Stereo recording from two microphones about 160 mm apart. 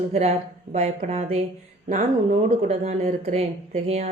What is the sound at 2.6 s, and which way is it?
Speech, 45° right (ahead or behind).